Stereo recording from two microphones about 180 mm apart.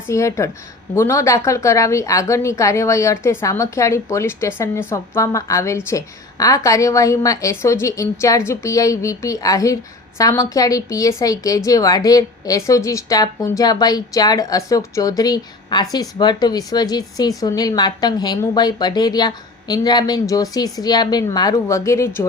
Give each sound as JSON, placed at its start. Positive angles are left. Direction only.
{"t": 0.1, "sound": "a woman's voice", "side_deg": 15}